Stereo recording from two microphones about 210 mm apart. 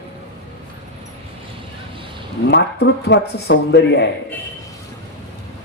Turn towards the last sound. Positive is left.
turn(degrees=55)  # may be behind; listen again after turning